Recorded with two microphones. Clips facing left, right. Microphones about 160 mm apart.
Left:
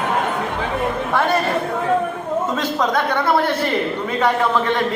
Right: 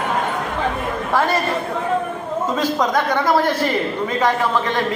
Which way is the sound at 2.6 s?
10° right (ahead or behind).